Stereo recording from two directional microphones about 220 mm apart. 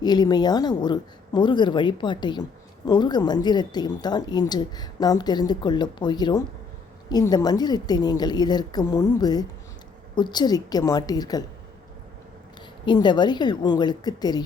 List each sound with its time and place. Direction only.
0.0 s a woman's voice: 20° left (ahead or behind)
12.8 s speech: 20° left (ahead or behind)